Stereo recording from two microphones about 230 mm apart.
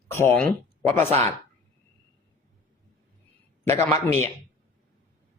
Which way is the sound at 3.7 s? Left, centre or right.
Centre.